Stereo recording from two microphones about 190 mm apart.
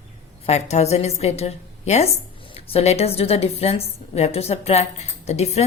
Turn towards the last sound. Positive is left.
turn(degrees=35)  # may be behind; listen again after turning